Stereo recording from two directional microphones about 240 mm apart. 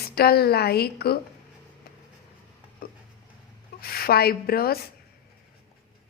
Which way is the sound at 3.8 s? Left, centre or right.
Left.